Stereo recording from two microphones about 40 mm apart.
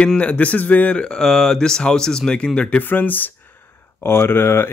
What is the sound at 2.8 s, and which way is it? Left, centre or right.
Speech, left.